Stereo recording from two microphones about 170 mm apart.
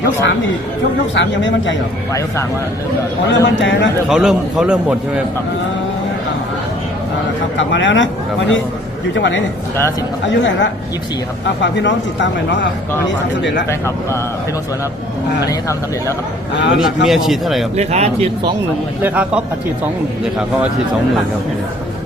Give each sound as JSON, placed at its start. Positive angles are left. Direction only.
{"t": 0.0, "sound": "speech", "side_deg": 90}
{"t": 3.2, "sound": "speech", "side_deg": 90}
{"t": 4.1, "sound": "a man's voice", "side_deg": -5}
{"t": 7.5, "sound": "speech", "side_deg": 90}
{"t": 13.7, "sound": "speech", "side_deg": 15}
{"t": 16.8, "sound": "a man's voice", "side_deg": 0}
{"t": 17.7, "sound": "speech", "side_deg": -40}
{"t": 19.0, "sound": "a man's voice", "side_deg": -10}